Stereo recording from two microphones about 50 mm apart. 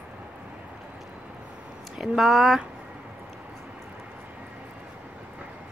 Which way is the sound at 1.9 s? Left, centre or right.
Centre.